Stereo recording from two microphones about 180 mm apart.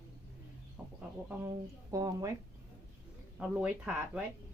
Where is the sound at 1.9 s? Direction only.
20° right (ahead or behind).